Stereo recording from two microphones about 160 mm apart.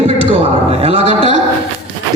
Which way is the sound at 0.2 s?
40° right (ahead or behind).